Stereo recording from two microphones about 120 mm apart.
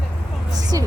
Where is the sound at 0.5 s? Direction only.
30° right (ahead or behind).